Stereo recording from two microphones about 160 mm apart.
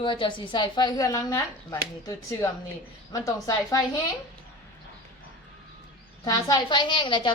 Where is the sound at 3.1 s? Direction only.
20° left (ahead or behind).